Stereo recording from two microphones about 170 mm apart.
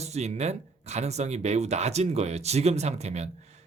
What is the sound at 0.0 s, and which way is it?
Speech, 40° right (ahead or behind).